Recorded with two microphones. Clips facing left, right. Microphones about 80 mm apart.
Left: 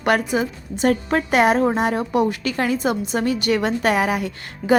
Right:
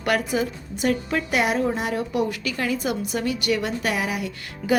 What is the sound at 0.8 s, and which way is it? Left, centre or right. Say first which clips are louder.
A woman's voice: left 4 dB; left.